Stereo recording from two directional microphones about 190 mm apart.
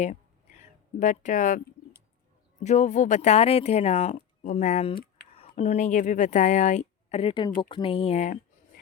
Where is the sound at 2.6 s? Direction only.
40° left (ahead or behind).